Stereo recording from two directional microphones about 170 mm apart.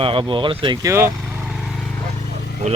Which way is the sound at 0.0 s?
30° right (ahead or behind).